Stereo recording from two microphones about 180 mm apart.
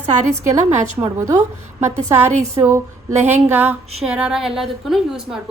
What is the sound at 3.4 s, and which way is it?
A woman's voice, 10° right (ahead or behind).